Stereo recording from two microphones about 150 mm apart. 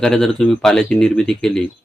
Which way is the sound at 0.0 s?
5° left (ahead or behind).